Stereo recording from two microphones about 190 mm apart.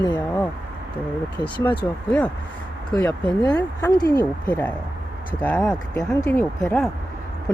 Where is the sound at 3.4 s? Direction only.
20° left (ahead or behind).